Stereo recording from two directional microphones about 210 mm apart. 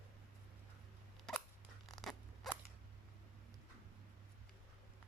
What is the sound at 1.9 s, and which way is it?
Scissors, centre (ahead or behind).